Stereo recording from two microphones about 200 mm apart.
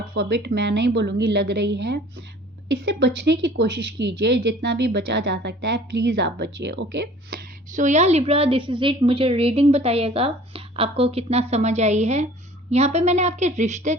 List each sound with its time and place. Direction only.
0.1 s a woman's voice: 60° right (ahead or behind); by 13.9 s 35° right (ahead or behind)